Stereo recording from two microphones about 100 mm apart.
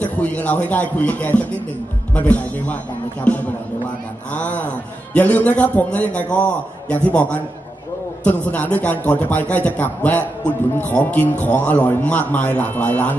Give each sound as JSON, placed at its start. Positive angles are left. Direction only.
{"t": 0.0, "sound": "a man's voice", "side_deg": 15}